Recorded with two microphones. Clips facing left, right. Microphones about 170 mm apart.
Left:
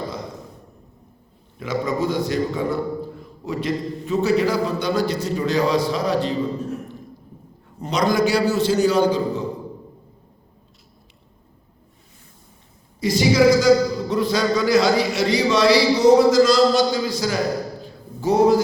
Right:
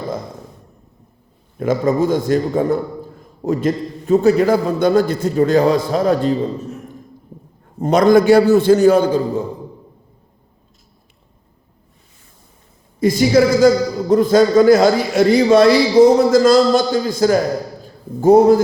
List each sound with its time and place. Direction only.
1.5 s a man's voice: 50° right (ahead or behind)
7.8 s a man's voice: 50° right (ahead or behind)
13.0 s a man's voice: 50° right (ahead or behind)